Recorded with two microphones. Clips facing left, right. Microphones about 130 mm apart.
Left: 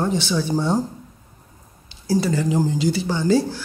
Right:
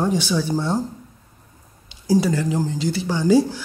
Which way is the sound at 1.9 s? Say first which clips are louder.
Right 3 dB; 15° right (ahead or behind).